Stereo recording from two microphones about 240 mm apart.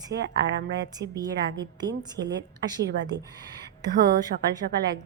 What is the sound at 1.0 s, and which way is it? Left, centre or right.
Speech, centre.